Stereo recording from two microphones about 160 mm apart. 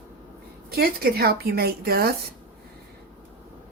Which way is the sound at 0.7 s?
70° right (ahead or behind).